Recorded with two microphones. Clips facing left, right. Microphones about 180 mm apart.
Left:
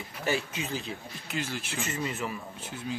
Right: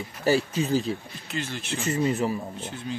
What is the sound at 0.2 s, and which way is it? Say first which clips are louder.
Speech: right 8 dB; 35° right (ahead or behind).